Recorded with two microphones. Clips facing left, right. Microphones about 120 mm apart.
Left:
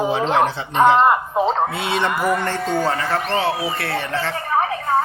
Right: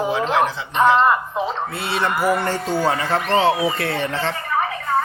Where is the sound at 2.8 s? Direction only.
15° right (ahead or behind).